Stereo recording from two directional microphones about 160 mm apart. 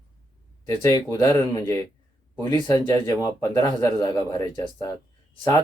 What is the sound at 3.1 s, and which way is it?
Speech, 20° left (ahead or behind).